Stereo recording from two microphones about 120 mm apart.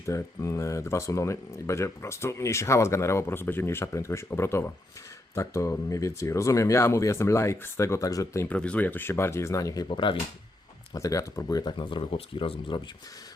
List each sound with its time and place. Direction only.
0.0 s speech: 25° left (ahead or behind)
8.4 s speech: 10° left (ahead or behind); by 9.8 s 30° left (ahead or behind)
9.9 s speech: 40° left (ahead or behind)
10.9 s speech: 25° left (ahead or behind); by 12.8 s 45° left (ahead or behind)